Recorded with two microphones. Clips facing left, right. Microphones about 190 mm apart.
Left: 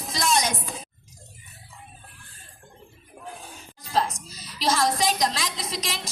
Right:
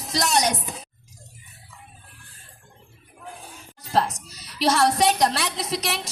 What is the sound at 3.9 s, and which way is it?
A woman's voice, 65° right (ahead or behind).